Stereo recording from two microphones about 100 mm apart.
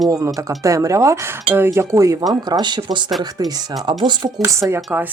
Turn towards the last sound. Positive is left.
turn(degrees=-25)  # may be behind; listen again after turning